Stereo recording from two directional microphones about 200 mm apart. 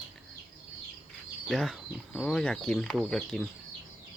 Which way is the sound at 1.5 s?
Centre (ahead or behind).